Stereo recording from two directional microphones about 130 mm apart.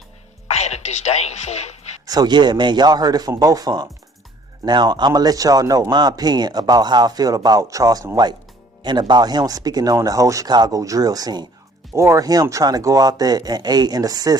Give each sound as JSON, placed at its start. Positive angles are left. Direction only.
{"t": 0.4, "sound": "music", "side_deg": 55}
{"t": 2.0, "sound": "speech", "side_deg": -30}